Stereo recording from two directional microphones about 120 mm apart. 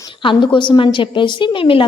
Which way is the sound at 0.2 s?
45° left (ahead or behind).